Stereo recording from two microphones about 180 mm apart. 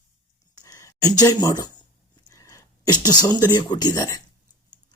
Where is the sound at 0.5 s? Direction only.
20° left (ahead or behind).